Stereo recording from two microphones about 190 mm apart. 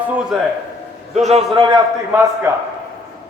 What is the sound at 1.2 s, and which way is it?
Speech, 35° right (ahead or behind).